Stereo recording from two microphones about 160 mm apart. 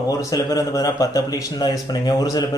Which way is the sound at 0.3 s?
20° left (ahead or behind).